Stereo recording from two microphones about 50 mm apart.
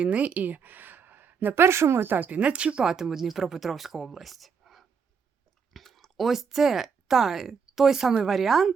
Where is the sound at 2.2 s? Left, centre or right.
Right.